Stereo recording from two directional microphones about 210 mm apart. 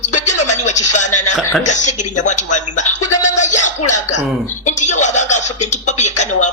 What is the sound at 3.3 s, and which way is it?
Speech, 35° left (ahead or behind).